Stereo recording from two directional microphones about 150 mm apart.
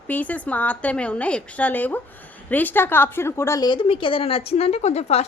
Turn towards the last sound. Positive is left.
turn(degrees=45)  # may be behind; listen again after turning